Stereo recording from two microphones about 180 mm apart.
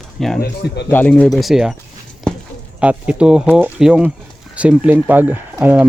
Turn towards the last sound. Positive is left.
turn(degrees=-10)  # may be behind; listen again after turning